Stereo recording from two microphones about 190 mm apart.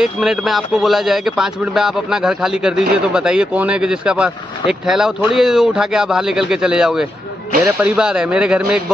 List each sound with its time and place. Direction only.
0.0 s speech: centre (ahead or behind)